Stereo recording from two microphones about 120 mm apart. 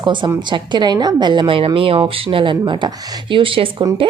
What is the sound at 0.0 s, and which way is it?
A woman's voice, 40° right (ahead or behind).